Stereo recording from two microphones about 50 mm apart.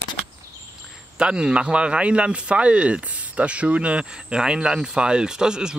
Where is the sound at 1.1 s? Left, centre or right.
Centre.